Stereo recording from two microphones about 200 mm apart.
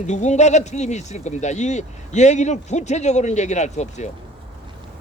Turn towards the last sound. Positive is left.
turn(degrees=35)  # may be behind; listen again after turning